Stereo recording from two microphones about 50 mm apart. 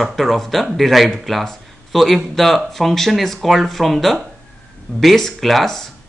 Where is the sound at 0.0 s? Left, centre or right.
Centre.